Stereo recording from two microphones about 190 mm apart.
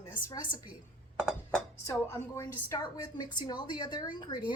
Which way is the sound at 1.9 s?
15° left (ahead or behind).